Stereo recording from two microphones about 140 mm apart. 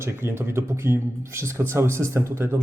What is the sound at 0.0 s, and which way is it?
A man's voice, 15° right (ahead or behind).